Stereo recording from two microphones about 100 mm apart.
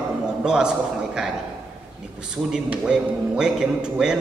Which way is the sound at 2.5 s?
10° right (ahead or behind).